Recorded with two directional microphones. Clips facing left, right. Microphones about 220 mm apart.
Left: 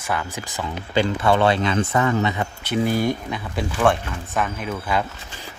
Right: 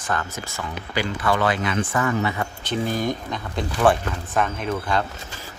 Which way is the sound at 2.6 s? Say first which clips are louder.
Left 4 dB; 10° left (ahead or behind).